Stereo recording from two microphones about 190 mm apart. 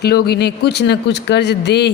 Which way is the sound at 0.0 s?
55° left (ahead or behind).